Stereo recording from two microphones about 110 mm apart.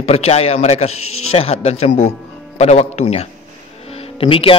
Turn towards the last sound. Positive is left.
turn(degrees=55)  # may be behind; listen again after turning